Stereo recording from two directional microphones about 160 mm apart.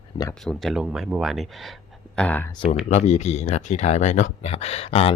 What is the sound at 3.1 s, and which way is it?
Speech, 45° left (ahead or behind).